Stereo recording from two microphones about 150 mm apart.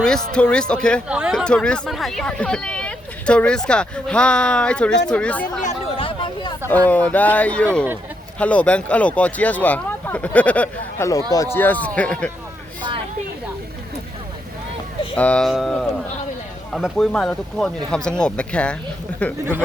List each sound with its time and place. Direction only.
0.0 s speech: 5° left (ahead or behind)
1.0 s speech: 5° right (ahead or behind)
6.0 s a sound: 35° left (ahead or behind)
6.7 s speech: 10° left (ahead or behind)
15.1 s speech: 10° left (ahead or behind)